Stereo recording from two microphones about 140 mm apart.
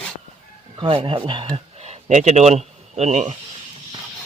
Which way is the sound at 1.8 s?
55° right (ahead or behind).